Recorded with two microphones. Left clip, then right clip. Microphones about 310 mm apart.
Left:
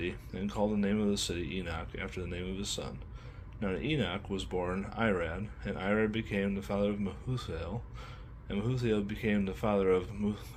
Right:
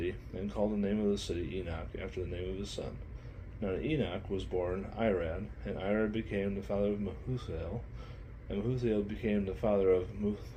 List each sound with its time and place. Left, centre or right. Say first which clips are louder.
0.0 s speech: even; left